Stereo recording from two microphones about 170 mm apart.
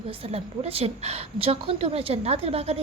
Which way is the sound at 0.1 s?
35° right (ahead or behind).